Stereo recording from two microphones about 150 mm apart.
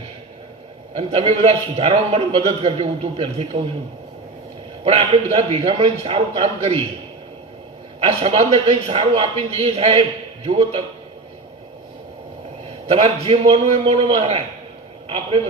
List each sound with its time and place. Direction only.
0.9 s a man's voice: 40° right (ahead or behind)
4.8 s a man's voice: 40° right (ahead or behind)
8.0 s a man's voice: 45° right (ahead or behind)
12.6 s a man's voice: 40° right (ahead or behind)